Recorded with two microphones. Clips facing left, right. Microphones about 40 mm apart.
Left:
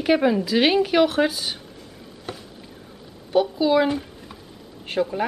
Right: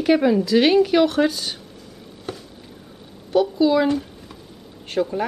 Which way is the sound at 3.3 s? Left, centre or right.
Centre.